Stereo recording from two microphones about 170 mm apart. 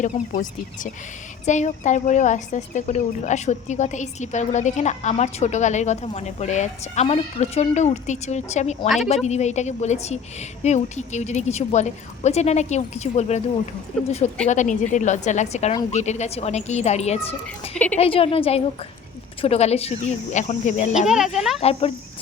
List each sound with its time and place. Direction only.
0.0 s a woman's voice: 45° left (ahead or behind)
14.4 s a woman's voice: 45° left (ahead or behind)
21.1 s speech: centre (ahead or behind)
21.6 s a woman's voice: 35° left (ahead or behind)